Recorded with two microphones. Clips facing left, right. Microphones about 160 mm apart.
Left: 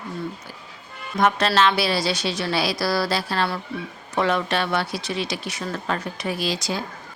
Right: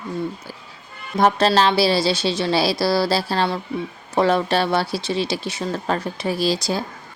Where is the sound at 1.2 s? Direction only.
35° right (ahead or behind).